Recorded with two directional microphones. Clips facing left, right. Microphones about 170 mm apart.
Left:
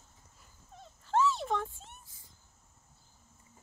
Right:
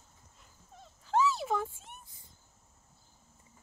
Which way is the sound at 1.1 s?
Centre (ahead or behind).